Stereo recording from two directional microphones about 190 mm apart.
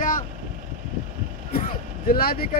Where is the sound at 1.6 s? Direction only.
50° left (ahead or behind).